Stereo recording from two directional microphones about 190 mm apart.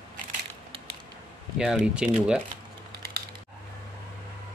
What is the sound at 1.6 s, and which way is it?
Speech, 5° right (ahead or behind).